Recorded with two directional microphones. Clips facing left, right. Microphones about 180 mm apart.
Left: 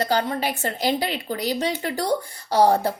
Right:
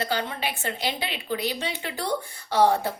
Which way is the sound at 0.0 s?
40° left (ahead or behind).